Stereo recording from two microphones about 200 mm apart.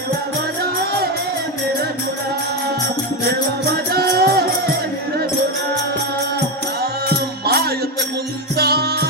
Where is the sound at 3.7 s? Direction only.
50° right (ahead or behind).